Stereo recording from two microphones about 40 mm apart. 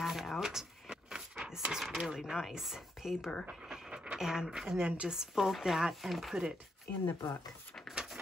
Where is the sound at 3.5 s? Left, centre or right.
Centre.